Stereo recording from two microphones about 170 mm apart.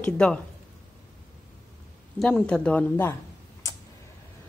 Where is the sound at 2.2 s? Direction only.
5° left (ahead or behind).